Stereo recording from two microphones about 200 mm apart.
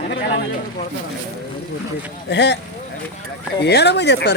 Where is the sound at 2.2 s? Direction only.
60° left (ahead or behind).